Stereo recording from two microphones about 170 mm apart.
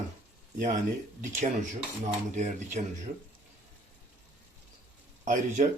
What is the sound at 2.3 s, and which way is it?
Speech, 45° right (ahead or behind).